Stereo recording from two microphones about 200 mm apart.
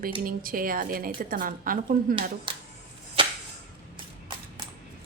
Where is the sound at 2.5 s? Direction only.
25° right (ahead or behind).